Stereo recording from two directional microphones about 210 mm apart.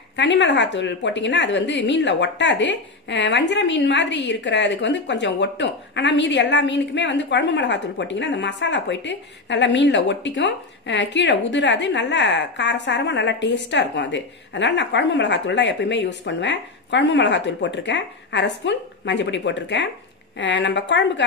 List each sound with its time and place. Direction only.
0.1 s a woman's voice: 55° left (ahead or behind)